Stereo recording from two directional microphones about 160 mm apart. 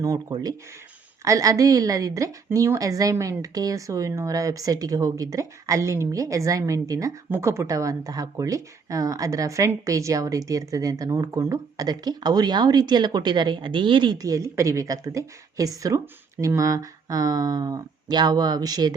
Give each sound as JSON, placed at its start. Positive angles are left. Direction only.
{"t": 0.0, "sound": "a woman's voice", "side_deg": -25}